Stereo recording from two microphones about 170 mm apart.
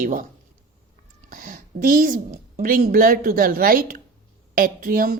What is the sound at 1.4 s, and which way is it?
A woman's voice, 55° right (ahead or behind).